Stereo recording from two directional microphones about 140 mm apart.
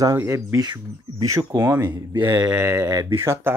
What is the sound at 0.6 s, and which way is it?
Speech, 30° right (ahead or behind).